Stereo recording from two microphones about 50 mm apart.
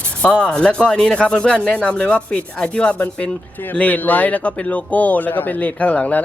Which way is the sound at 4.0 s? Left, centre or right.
Left.